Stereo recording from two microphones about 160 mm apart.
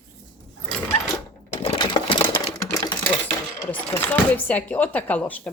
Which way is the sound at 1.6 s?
30° left (ahead or behind).